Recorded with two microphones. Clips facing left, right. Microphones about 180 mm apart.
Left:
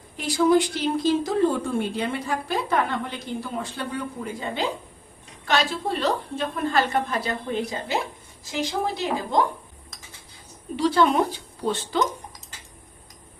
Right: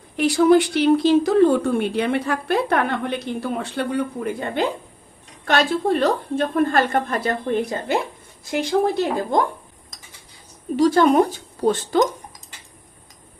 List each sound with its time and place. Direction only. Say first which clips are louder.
0.2 s a woman's voice: right 5 dB; 70° right (ahead or behind)
10.8 s a woman's voice: right 5 dB; 45° right (ahead or behind)